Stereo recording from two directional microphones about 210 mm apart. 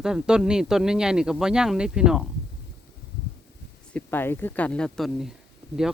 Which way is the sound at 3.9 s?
10° left (ahead or behind).